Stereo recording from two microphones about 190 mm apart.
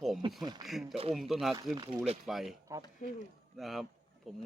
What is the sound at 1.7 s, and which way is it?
Speech, 20° right (ahead or behind).